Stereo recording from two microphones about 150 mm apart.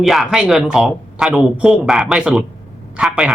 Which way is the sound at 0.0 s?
Centre (ahead or behind).